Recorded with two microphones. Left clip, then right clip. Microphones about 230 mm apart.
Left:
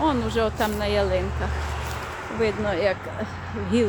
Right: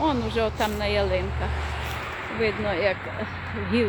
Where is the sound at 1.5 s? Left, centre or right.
Left.